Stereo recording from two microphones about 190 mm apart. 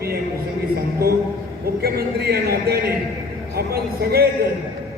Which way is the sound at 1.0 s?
55° right (ahead or behind).